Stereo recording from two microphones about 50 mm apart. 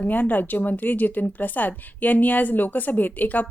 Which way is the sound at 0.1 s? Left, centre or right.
Left.